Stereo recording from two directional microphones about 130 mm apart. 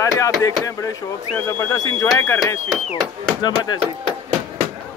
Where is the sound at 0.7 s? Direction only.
25° left (ahead or behind).